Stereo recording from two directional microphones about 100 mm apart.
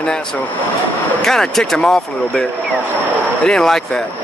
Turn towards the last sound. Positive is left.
turn(degrees=5)  # may be behind; listen again after turning